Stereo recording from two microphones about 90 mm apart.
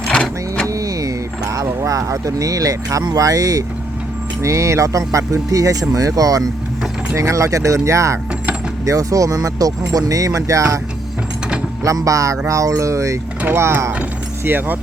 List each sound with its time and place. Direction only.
0.1 s vehicle: 10° left (ahead or behind)
0.7 s vehicle: 40° right (ahead or behind)
4.4 s speech: 35° right (ahead or behind)
11.8 s speech: 40° right (ahead or behind)
13.4 s speech: 25° right (ahead or behind)